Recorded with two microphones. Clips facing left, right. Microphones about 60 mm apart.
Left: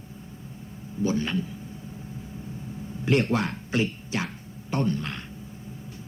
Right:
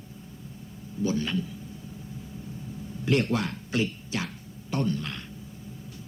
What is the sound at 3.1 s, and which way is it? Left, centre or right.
Speech, left.